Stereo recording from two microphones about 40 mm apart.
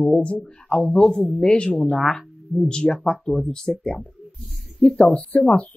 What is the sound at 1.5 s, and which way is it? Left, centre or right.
Speech, left.